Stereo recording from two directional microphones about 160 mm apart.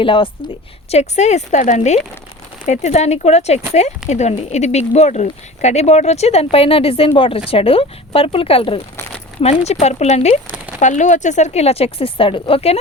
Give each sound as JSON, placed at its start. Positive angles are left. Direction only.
{"t": 0.0, "sound": "a woman's voice", "side_deg": 30}